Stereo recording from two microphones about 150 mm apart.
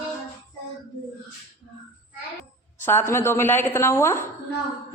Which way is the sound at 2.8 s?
15° left (ahead or behind).